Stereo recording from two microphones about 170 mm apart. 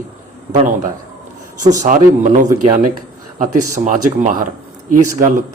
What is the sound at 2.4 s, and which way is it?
Speech, 25° right (ahead or behind).